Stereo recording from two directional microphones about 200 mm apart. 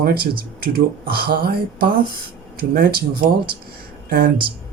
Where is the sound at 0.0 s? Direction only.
50° right (ahead or behind).